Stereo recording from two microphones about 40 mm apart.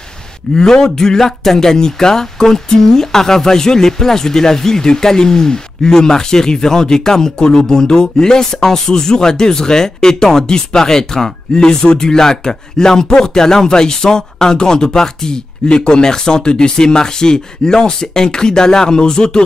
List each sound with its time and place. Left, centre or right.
0.6 s speech: centre
11.5 s speech: left